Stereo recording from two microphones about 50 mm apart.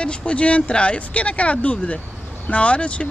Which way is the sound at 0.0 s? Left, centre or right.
Left.